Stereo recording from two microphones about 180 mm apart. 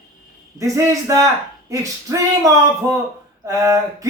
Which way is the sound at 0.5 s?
20° right (ahead or behind).